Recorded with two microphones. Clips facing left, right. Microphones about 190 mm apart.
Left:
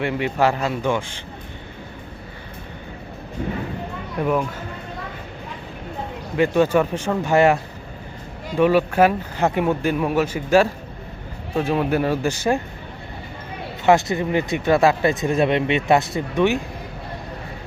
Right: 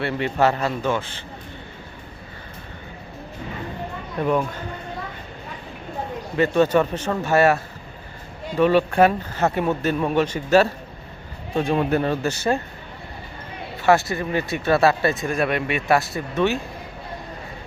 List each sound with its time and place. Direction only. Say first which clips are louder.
0.0 s speech: even; 10° left (ahead or behind)
4.2 s speech: even; 5° left (ahead or behind)
6.3 s speech: left 1 dB; 10° left (ahead or behind)
13.8 s speech: left 2 dB; 20° left (ahead or behind)